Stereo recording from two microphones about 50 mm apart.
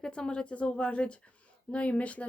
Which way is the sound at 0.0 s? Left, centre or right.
Centre.